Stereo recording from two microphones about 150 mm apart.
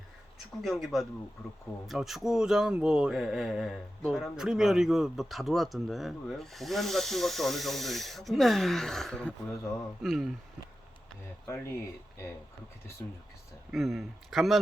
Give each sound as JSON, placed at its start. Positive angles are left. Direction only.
{"t": 0.3, "sound": "speech", "side_deg": 0}
{"t": 11.4, "sound": "speech", "side_deg": 20}
{"t": 13.7, "sound": "speech", "side_deg": 0}